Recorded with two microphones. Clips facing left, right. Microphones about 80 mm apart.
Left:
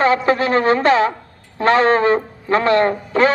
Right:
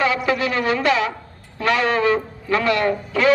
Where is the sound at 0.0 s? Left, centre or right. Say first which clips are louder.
Left 4 dB; left.